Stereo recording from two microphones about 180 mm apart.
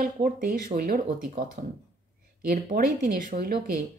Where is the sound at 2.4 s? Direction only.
50° right (ahead or behind).